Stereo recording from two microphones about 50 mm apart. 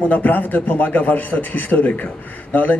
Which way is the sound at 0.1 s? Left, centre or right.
Left.